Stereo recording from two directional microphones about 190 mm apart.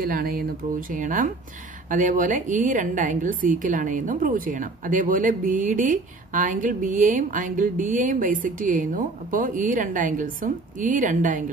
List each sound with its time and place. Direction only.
0.0 s a woman's voice: 50° right (ahead or behind)